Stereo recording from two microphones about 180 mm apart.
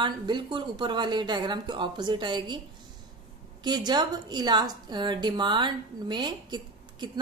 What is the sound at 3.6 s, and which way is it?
A woman's voice, 25° right (ahead or behind).